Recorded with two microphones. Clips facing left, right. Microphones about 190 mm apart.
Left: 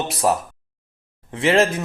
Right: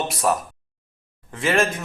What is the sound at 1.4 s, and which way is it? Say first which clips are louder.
Speech: left 4 dB; 25° left (ahead or behind).